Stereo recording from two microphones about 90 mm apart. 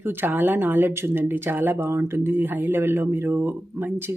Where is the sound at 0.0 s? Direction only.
25° right (ahead or behind).